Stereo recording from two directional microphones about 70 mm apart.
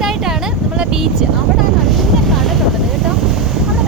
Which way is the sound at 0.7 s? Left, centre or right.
Centre.